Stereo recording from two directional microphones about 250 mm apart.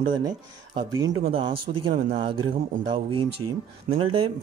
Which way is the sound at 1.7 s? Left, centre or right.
Right.